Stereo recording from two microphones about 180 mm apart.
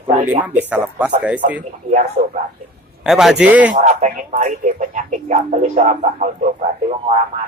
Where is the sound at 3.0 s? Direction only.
5° right (ahead or behind).